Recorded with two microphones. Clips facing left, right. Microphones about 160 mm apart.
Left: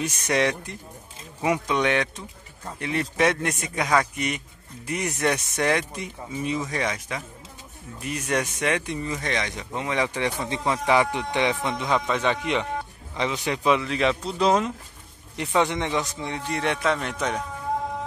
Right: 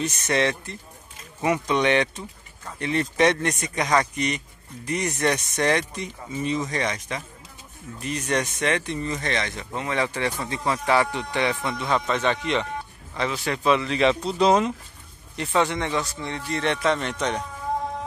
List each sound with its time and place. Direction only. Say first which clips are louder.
0.0 s speech: even; 10° left (ahead or behind)
15.3 s speech: even; 15° left (ahead or behind)